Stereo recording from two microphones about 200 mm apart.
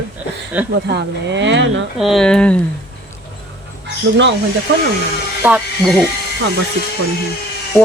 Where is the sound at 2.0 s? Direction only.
Centre (ahead or behind).